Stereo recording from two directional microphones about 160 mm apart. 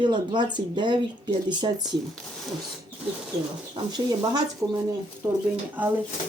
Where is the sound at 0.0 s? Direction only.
30° right (ahead or behind).